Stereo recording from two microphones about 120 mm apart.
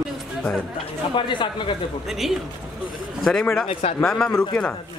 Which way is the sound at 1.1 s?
40° left (ahead or behind).